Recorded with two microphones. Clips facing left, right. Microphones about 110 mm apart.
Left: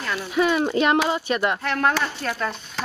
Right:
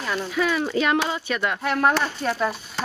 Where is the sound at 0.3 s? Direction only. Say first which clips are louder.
Left 4 dB; 25° left (ahead or behind).